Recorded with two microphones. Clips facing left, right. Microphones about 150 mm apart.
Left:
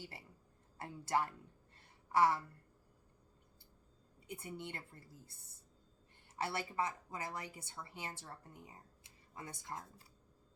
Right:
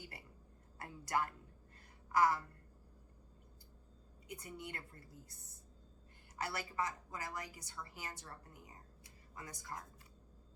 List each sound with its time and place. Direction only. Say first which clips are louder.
0.0 s a woman's voice: left 2 dB; 25° left (ahead or behind)
4.3 s a woman's voice: left 2 dB; 25° left (ahead or behind)
6.4 s a woman's voice: left 2 dB; 25° left (ahead or behind)